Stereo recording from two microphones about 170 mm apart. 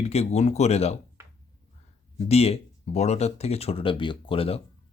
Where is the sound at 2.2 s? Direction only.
35° left (ahead or behind).